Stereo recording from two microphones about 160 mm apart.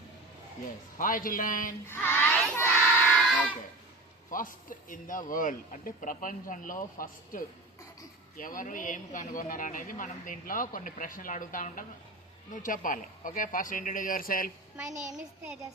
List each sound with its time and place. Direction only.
0.9 s speech: 60° left (ahead or behind)
1.9 s music: 10° left (ahead or behind)
4.3 s speech: 60° left (ahead or behind)
14.9 s a child's voice: 5° right (ahead or behind)